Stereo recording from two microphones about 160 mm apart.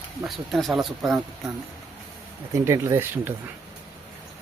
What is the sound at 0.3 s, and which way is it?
Speech, centre (ahead or behind).